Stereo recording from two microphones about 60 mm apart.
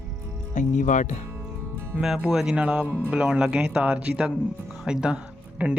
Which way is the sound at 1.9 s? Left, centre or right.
Centre.